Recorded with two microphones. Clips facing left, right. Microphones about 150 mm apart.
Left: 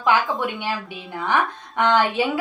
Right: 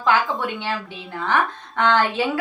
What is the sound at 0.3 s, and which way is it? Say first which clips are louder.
A woman's voice: even; 15° left (ahead or behind).